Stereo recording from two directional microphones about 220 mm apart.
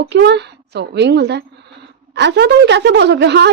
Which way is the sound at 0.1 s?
50° right (ahead or behind).